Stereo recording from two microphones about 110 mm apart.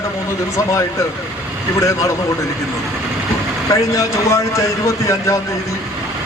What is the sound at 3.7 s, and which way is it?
Speech, 30° left (ahead or behind).